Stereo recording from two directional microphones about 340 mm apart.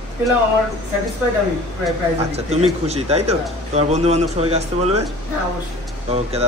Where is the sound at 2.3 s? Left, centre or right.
Centre.